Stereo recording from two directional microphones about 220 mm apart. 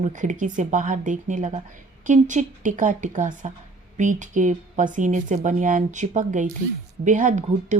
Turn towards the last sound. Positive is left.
turn(degrees=-35)  # may be behind; listen again after turning